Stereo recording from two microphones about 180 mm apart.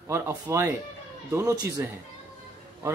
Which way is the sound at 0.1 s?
15° right (ahead or behind).